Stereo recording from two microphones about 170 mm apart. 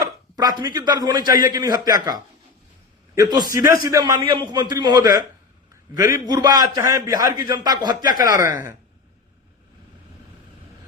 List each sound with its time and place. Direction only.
0.0 s a man's voice: 25° right (ahead or behind)